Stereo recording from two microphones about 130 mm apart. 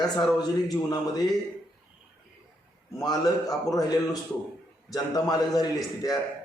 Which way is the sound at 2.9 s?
30° left (ahead or behind).